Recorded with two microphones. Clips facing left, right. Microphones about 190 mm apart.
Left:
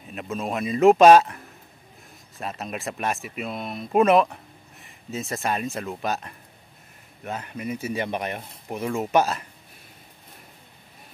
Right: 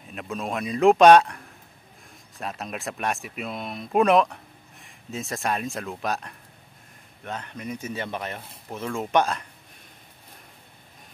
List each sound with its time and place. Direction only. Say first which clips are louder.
0.1 s speech: left 2 dB; centre (ahead or behind)